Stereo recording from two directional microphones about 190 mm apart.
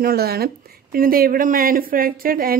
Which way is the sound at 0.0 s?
55° right (ahead or behind).